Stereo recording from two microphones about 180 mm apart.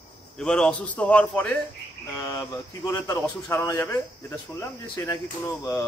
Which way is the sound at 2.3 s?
20° left (ahead or behind).